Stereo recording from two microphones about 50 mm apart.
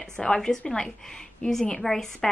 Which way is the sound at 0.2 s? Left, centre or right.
Centre.